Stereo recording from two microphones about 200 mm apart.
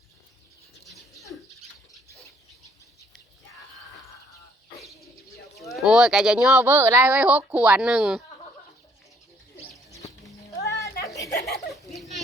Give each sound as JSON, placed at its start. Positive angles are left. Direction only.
{"t": 0.9, "sound": "bird", "side_deg": 0}
{"t": 5.5, "sound": "speech", "side_deg": 0}
{"t": 10.6, "sound": "a sound", "side_deg": 15}
{"t": 11.7, "sound": "children playing", "side_deg": 0}